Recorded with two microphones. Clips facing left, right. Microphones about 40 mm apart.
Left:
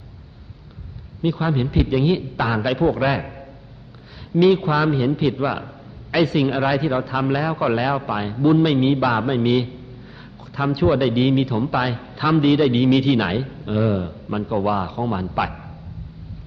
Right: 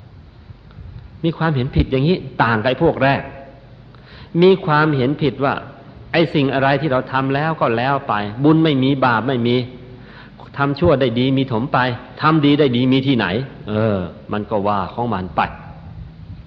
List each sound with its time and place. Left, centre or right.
1.2 s a man's voice: right